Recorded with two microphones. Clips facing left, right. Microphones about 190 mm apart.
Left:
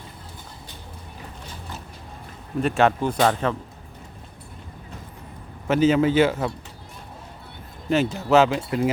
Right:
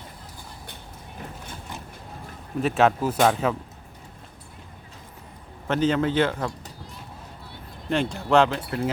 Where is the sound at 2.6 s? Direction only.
Centre (ahead or behind).